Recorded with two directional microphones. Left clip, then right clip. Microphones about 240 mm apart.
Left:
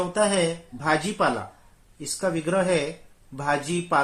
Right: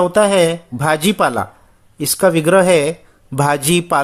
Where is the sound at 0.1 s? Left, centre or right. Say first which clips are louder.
Right 10 dB; right.